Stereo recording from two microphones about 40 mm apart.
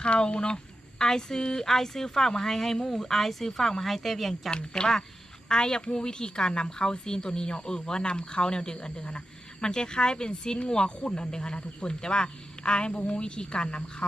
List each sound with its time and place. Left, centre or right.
0.0 s speech: left; by 4.5 s centre
4.5 s a woman's voice: left